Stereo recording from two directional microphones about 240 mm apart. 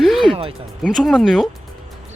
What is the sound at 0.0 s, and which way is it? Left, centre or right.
Music, centre.